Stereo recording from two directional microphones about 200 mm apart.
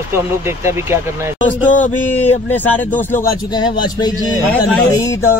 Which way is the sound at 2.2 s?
35° left (ahead or behind).